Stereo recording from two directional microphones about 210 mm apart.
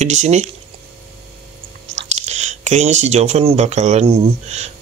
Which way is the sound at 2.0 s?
30° right (ahead or behind).